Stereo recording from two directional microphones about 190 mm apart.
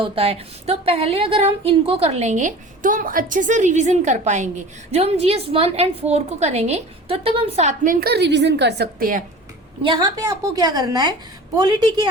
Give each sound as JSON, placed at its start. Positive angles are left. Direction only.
{"t": 0.0, "sound": "a woman's voice", "side_deg": -30}
{"t": 8.0, "sound": "a woman's voice", "side_deg": -60}
{"t": 9.8, "sound": "a woman's voice", "side_deg": -20}